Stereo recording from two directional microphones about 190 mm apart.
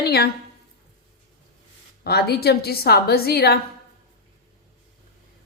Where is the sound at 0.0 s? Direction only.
60° left (ahead or behind).